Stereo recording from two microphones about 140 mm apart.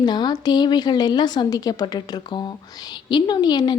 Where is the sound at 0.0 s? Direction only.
30° left (ahead or behind).